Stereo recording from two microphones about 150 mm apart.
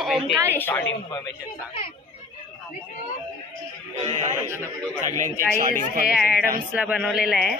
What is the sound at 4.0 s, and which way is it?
Music, 50° right (ahead or behind).